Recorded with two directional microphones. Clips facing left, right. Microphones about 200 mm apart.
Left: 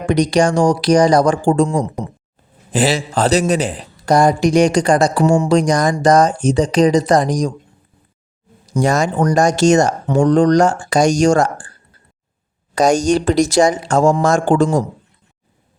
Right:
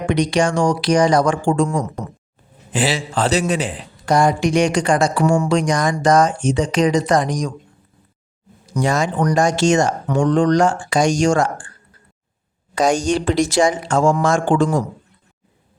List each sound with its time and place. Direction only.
0.0 s a man's voice: 40° left (ahead or behind)
2.7 s a man's voice: 40° left (ahead or behind)
8.6 s a man's voice: 40° left (ahead or behind)
12.7 s a man's voice: 40° left (ahead or behind)